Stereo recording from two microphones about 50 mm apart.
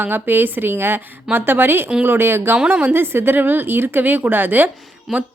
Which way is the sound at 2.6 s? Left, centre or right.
Centre.